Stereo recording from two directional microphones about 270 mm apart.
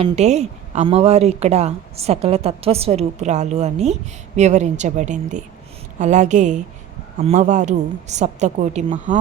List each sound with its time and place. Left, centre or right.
0.0 s a woman's voice: right